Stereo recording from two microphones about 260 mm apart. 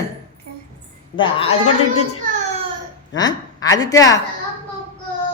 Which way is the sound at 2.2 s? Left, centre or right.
Right.